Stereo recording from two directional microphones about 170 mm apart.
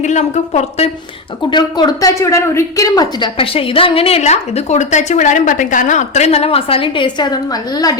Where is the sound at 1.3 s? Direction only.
30° left (ahead or behind).